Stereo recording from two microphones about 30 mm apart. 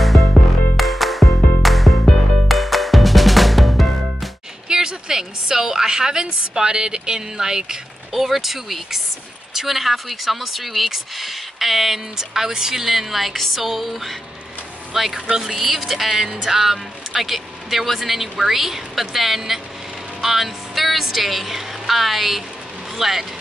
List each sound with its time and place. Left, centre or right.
0.0 s music: centre
4.6 s a sound: right
7.2 s speech: centre
8.1 s speech: centre
12.2 s speech: centre
15.1 s speech: right
15.6 s speech: centre